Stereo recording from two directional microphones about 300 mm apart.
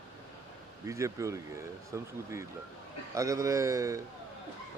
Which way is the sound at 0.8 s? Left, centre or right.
Centre.